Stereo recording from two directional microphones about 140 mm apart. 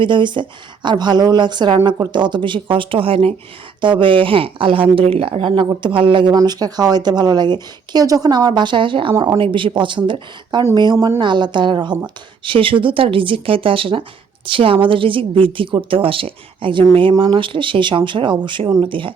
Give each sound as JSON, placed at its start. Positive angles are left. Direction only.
{"t": 0.0, "sound": "speech", "side_deg": -35}
{"t": 10.9, "sound": "a woman's voice", "side_deg": -20}
{"t": 11.2, "sound": "speech", "side_deg": -35}